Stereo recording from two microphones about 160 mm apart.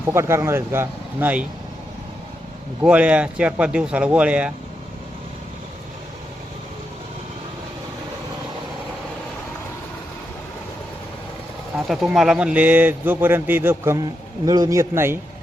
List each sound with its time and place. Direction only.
0.0 s speech: 15° right (ahead or behind)
2.8 s speech: 10° right (ahead or behind)
11.9 s speech: centre (ahead or behind)